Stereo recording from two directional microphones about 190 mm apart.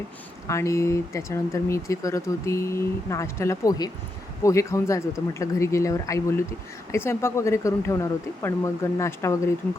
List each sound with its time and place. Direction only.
0.4 s speech: 15° left (ahead or behind)